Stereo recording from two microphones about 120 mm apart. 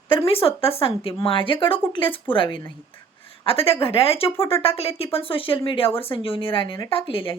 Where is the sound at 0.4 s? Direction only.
55° left (ahead or behind).